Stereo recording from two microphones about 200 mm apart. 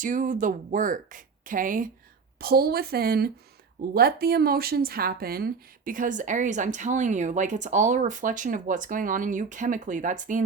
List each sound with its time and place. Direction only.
0.0 s speech: 40° right (ahead or behind)